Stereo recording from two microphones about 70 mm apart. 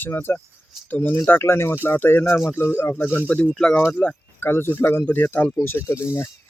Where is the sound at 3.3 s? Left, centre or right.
Left.